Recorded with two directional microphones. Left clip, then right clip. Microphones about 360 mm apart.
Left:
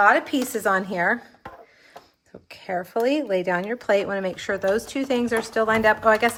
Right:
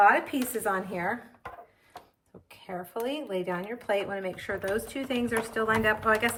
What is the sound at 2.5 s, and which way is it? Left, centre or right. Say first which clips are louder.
A woman's voice: left 10 dB; centre.